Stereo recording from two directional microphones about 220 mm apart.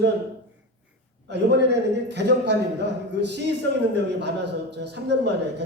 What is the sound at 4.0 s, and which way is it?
A man's voice, 50° right (ahead or behind).